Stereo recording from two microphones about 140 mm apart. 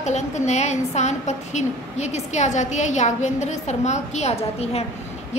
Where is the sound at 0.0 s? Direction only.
55° left (ahead or behind).